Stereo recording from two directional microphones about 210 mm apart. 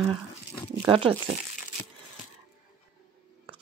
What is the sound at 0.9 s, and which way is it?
Speech, 25° right (ahead or behind).